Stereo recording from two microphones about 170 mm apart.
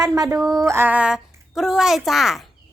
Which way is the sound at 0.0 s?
20° right (ahead or behind).